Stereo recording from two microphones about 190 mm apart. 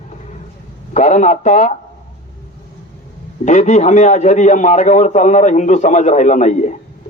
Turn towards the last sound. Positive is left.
turn(degrees=40)  # may be behind; listen again after turning